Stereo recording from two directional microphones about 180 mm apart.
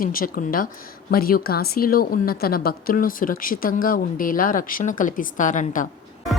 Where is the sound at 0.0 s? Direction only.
50° left (ahead or behind).